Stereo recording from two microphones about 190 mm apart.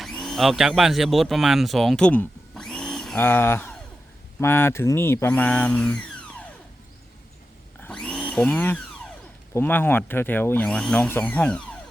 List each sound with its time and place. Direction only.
0.0 s speech: centre (ahead or behind)
7.8 s blender: 5° left (ahead or behind)
9.6 s speech: 10° left (ahead or behind)